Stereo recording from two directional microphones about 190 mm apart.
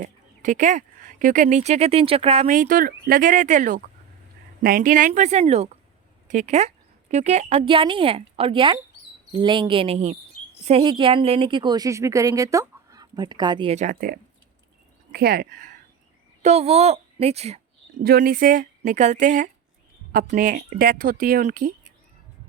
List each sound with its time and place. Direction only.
0.0 s speech: 40° right (ahead or behind)
16.4 s speech: 35° right (ahead or behind)
18.0 s speech: 50° right (ahead or behind)